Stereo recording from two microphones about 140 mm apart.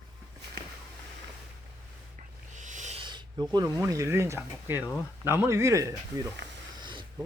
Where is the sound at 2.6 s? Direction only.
60° right (ahead or behind).